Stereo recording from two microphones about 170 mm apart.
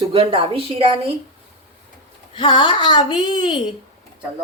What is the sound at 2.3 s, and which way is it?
Speech, 30° left (ahead or behind).